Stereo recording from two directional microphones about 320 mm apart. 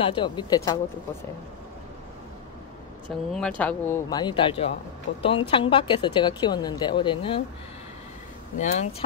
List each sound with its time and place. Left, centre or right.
0.0 s a woman's voice: centre
3.3 s a woman's voice: centre
8.5 s speech: left